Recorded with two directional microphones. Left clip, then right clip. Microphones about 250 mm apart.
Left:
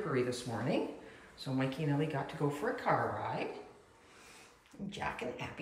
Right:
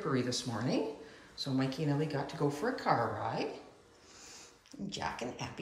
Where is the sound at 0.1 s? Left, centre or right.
Centre.